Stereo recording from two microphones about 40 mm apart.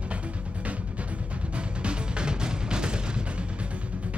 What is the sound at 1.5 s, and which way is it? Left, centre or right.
Music, right.